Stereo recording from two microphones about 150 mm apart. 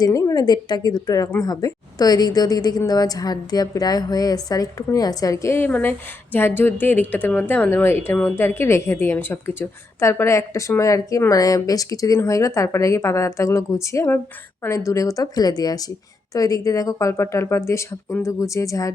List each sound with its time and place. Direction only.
0.0 s speech: 20° left (ahead or behind)